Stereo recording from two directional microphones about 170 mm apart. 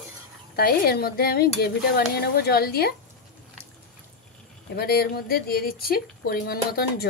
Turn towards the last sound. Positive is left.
turn(degrees=65)  # may be behind; listen again after turning